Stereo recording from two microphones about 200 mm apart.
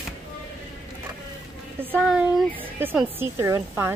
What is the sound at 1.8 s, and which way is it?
A woman's voice, 10° right (ahead or behind).